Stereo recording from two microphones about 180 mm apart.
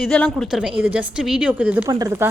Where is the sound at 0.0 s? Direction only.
5° left (ahead or behind).